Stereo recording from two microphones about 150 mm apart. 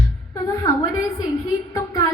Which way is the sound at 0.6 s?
20° left (ahead or behind).